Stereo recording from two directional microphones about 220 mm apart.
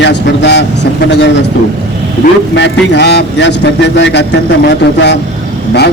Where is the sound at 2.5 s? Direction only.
50° left (ahead or behind).